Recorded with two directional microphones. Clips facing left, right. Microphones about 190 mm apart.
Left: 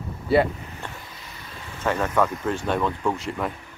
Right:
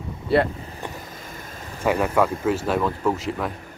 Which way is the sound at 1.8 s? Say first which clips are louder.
Right 2 dB; 10° right (ahead or behind).